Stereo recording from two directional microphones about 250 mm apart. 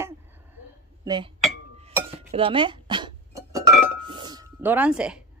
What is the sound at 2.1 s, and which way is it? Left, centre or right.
Music, right.